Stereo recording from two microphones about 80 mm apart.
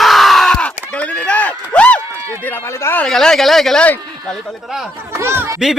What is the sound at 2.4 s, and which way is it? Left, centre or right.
Speech, left.